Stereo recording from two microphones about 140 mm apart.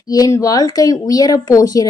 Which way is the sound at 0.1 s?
25° left (ahead or behind).